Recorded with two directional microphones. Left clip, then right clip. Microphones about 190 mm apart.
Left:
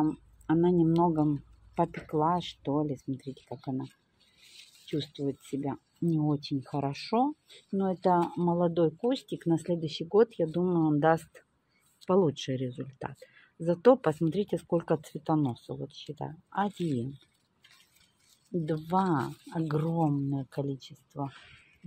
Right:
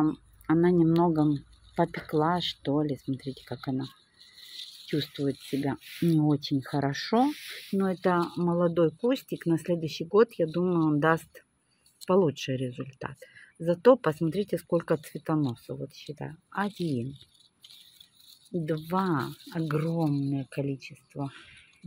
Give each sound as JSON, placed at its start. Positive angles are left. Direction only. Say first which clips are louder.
{"t": 0.0, "sound": "a sound", "louder": "right 2 dB", "side_deg": -10}
{"t": 2.0, "sound": "speech", "louder": "right 1 dB", "side_deg": -10}
{"t": 6.1, "sound": "speech", "louder": "right 4 dB", "side_deg": -20}
{"t": 18.6, "sound": "speech", "louder": "even", "side_deg": 0}